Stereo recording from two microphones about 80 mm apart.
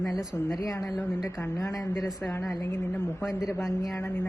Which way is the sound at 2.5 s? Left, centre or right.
Left.